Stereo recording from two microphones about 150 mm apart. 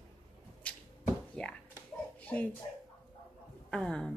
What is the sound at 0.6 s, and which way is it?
Arrow, 10° left (ahead or behind).